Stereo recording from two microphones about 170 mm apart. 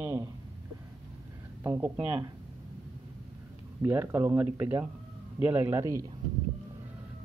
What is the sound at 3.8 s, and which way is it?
Speech, 15° right (ahead or behind).